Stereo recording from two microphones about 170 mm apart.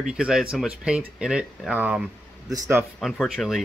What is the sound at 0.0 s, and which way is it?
Speech, 5° right (ahead or behind).